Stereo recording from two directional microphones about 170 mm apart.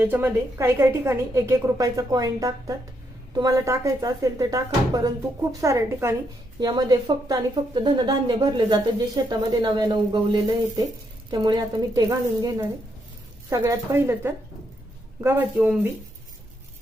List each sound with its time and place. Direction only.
0.0 s a woman's voice: 10° right (ahead or behind)